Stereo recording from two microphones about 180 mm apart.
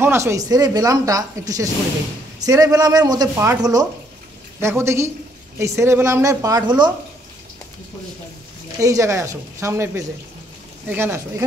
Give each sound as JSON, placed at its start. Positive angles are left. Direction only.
{"t": 0.0, "sound": "a woman's voice", "side_deg": -15}
{"t": 8.8, "sound": "a woman's voice", "side_deg": -15}